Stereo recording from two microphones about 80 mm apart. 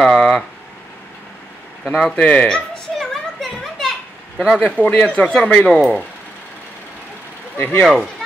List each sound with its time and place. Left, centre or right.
0.0 s a sound: centre
2.0 s a sound: centre
4.4 s speech: centre
4.6 s speech: centre
7.5 s speech: left
7.8 s speech: centre